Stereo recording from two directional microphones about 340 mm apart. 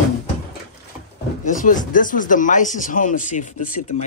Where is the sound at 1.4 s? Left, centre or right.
Left.